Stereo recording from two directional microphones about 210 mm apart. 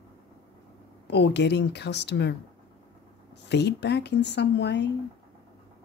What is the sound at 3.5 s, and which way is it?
Speech, 55° left (ahead or behind).